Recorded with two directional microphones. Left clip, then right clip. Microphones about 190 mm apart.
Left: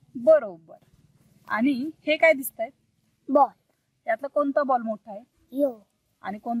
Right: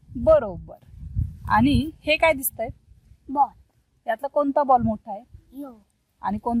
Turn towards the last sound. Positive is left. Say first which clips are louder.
# right 5 dB
turn(degrees=-25)  # may be behind; listen again after turning